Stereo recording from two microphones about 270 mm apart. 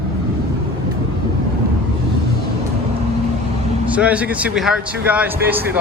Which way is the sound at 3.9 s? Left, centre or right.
Centre.